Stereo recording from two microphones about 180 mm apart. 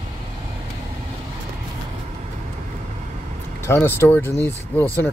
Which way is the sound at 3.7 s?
10° left (ahead or behind).